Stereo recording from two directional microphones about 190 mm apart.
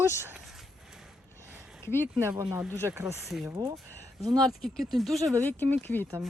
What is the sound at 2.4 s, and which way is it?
Speech, 10° right (ahead or behind).